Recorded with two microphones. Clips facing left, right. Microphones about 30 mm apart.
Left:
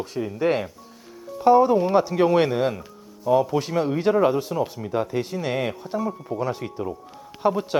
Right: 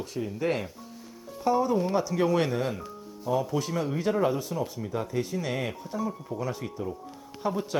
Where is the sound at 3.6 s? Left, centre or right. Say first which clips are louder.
Left 6 dB; left.